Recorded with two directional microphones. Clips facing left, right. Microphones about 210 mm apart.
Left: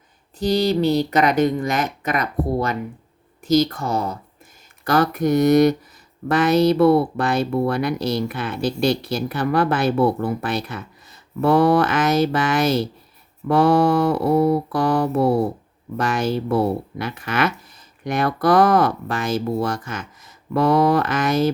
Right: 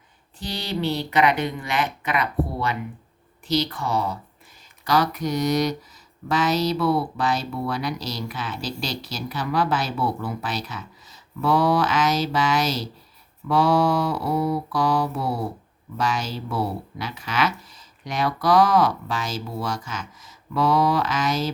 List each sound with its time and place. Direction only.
0.3 s speech: 40° left (ahead or behind)